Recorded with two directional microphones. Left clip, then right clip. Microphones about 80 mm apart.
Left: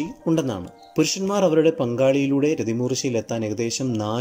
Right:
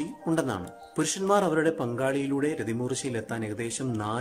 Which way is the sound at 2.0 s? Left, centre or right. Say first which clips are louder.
Left 9 dB; left.